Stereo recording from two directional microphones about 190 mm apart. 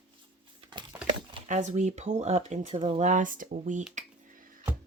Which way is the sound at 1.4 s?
40° right (ahead or behind).